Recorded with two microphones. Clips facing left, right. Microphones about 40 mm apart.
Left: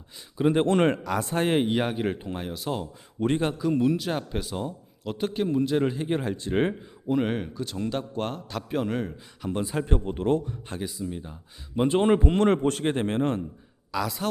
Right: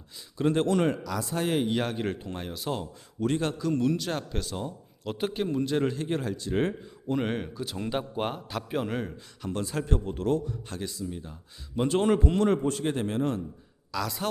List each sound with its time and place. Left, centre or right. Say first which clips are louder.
0.3 s speech: left 3 dB; centre
0.7 s speech: left 3 dB; left
1.7 s a man's voice: left 3 dB; centre
3.2 s speech: left 2 dB; left
3.4 s a man's voice: left 3 dB; centre
6.2 s speech: left 2 dB; left
7.1 s a man's voice: left 3 dB; centre
9.5 s speech: left 3 dB; centre
12.4 s a man's voice: left 3 dB; left
12.8 s speech: left 3 dB; left
13.9 s speech: left 3 dB; centre